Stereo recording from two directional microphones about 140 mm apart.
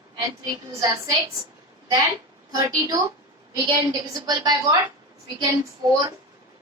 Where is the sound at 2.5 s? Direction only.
25° right (ahead or behind).